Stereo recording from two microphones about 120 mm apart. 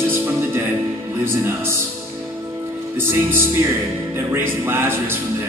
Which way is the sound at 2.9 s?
20° right (ahead or behind).